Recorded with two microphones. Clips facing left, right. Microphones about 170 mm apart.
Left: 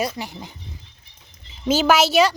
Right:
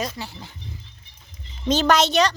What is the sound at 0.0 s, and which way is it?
Speech, 10° left (ahead or behind).